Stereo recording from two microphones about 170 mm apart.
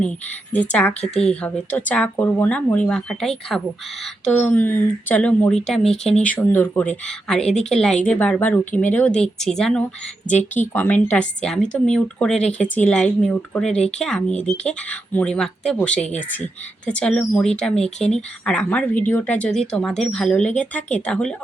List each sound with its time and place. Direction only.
0.5 s speech: 10° left (ahead or behind)